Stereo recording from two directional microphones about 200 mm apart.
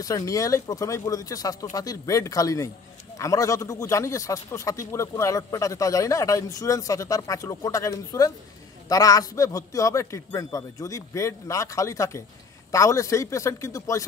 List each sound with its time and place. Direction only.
0.0 s a man's voice: 15° left (ahead or behind)